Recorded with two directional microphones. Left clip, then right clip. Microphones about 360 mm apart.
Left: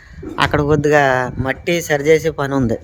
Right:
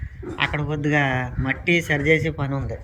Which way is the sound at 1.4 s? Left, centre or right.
Centre.